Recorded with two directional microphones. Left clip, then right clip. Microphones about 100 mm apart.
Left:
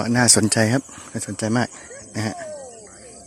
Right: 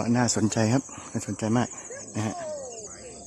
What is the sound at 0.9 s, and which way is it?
Speech, centre (ahead or behind).